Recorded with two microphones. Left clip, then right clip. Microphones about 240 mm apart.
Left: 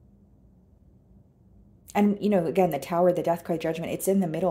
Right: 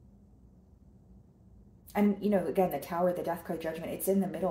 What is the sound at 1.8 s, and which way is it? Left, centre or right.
Speech, left.